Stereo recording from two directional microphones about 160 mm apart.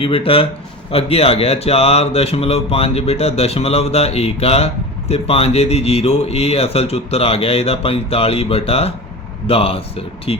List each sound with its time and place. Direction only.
0.0 s speech: 35° left (ahead or behind)